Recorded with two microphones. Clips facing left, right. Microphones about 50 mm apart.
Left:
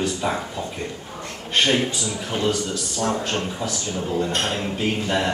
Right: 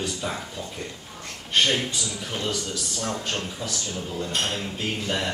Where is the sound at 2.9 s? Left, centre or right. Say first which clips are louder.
Left 7 dB; left.